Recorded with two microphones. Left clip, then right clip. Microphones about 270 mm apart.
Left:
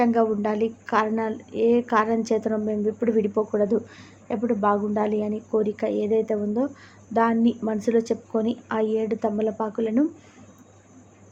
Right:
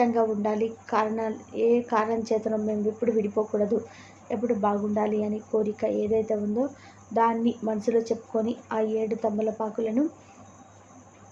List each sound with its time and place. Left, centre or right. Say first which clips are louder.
0.0 s a woman's voice: left 2 dB; left